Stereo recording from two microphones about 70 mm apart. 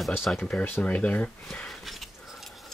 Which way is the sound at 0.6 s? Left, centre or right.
Left.